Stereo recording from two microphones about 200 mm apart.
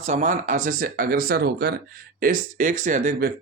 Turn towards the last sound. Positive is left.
turn(degrees=-45)  # may be behind; listen again after turning